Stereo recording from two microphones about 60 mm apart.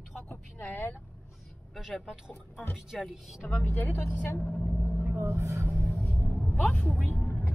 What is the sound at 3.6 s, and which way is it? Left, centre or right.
Speech, left.